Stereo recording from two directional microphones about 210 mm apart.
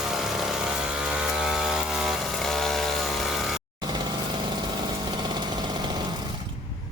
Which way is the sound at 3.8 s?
20° right (ahead or behind).